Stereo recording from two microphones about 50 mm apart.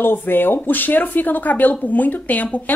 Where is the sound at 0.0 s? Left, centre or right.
Left.